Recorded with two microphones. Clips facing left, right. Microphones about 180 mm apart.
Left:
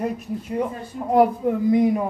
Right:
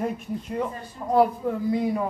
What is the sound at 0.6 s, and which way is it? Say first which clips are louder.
Speech: left 4 dB; 15° left (ahead or behind).